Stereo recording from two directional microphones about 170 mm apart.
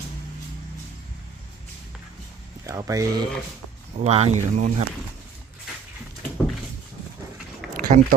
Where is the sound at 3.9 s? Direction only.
40° right (ahead or behind).